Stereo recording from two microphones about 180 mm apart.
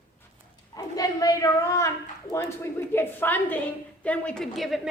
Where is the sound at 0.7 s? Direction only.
20° left (ahead or behind); by 4.8 s centre (ahead or behind).